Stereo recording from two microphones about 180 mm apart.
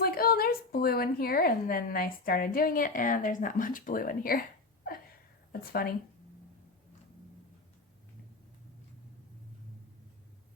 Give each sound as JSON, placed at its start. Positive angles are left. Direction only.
{"t": 0.0, "sound": "a woman's voice", "side_deg": 55}
{"t": 5.5, "sound": "speech", "side_deg": 55}